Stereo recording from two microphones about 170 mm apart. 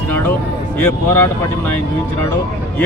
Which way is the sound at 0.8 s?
10° left (ahead or behind).